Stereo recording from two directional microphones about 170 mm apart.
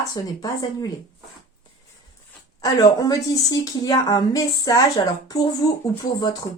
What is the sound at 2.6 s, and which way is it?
Speech, 20° left (ahead or behind).